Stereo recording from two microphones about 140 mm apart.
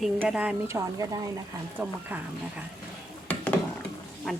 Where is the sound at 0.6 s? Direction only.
20° right (ahead or behind).